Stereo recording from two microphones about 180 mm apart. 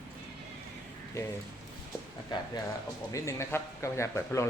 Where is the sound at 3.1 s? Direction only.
15° left (ahead or behind).